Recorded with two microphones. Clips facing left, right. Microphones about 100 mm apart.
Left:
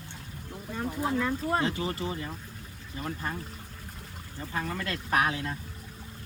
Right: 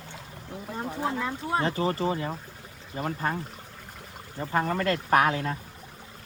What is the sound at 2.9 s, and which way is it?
Speech, 50° right (ahead or behind).